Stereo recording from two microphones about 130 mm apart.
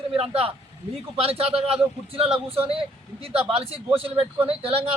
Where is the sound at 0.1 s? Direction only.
45° right (ahead or behind).